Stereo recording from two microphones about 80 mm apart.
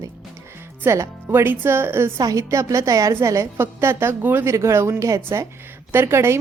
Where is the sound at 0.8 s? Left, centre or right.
Right.